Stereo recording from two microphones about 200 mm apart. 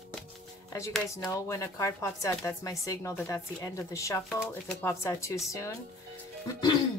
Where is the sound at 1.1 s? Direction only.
15° left (ahead or behind).